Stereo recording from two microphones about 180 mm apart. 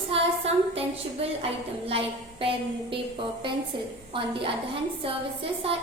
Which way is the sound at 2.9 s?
30° right (ahead or behind).